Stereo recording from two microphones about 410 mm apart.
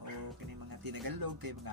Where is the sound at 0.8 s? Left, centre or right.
Right.